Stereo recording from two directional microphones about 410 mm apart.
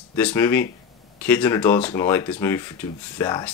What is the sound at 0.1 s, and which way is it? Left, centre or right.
Speech, centre.